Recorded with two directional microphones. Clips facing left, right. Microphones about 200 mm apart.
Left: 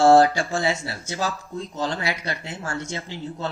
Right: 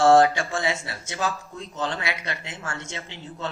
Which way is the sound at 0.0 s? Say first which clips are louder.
Left 2 dB; 35° left (ahead or behind).